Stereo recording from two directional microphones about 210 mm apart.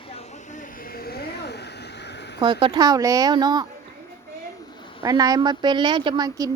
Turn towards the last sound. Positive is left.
turn(degrees=-20)  # may be behind; listen again after turning